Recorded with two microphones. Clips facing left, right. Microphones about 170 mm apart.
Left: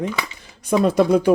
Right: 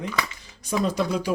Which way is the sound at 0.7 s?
55° left (ahead or behind).